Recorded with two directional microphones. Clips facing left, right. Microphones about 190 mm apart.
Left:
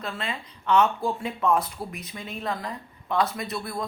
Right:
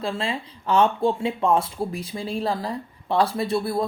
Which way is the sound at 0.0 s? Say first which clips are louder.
Right 6 dB; 30° right (ahead or behind).